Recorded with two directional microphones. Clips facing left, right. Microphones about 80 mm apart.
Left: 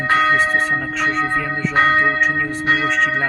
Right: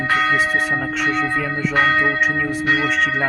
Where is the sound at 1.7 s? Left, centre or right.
Left.